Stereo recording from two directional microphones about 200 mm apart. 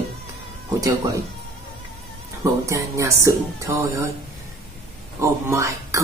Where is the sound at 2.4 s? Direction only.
15° right (ahead or behind).